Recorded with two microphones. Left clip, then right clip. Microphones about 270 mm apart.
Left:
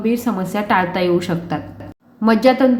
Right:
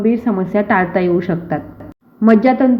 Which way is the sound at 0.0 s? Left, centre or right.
Centre.